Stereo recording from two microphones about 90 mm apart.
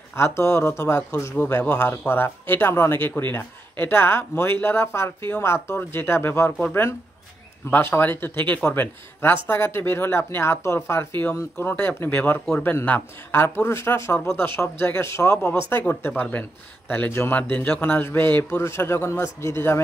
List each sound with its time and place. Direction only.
0.1 s speech: 30° left (ahead or behind)
1.3 s speech: 20° left (ahead or behind)